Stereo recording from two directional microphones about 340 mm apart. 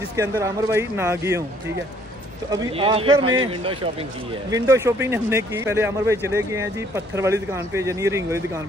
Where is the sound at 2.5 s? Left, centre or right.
Centre.